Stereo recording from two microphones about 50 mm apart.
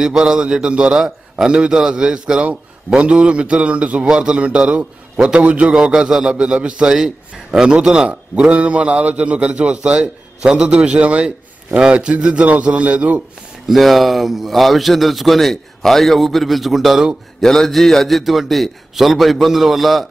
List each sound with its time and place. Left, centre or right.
0.0 s mantra: centre
2.9 s a man's voice: centre
6.3 s mantra: centre
7.9 s a man's voice: right
13.7 s a man's voice: centre
17.4 s a man's voice: centre